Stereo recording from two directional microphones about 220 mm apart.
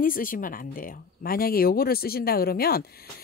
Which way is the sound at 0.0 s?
40° left (ahead or behind).